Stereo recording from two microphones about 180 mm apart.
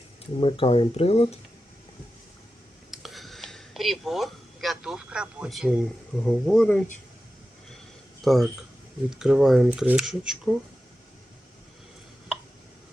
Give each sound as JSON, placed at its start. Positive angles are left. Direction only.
{"t": 0.3, "sound": "speech", "side_deg": 30}
{"t": 2.9, "sound": "a sound", "side_deg": 0}
{"t": 6.2, "sound": "speech", "side_deg": 5}
{"t": 8.2, "sound": "speech", "side_deg": 0}